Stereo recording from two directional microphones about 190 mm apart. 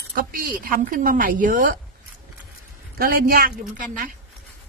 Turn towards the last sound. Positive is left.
turn(degrees=-45)  # may be behind; listen again after turning